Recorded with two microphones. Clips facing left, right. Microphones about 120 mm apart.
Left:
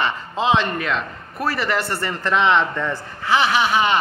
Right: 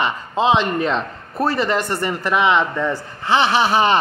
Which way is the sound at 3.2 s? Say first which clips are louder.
Right 2 dB; 30° right (ahead or behind).